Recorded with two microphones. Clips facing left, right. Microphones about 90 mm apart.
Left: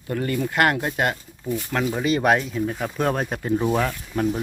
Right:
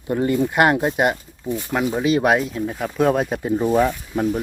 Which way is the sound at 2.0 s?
5° right (ahead or behind).